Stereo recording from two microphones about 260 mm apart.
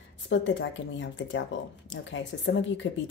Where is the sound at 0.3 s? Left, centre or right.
Left.